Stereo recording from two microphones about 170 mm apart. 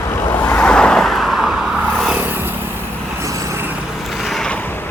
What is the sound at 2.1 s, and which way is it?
Vehicle, 10° right (ahead or behind).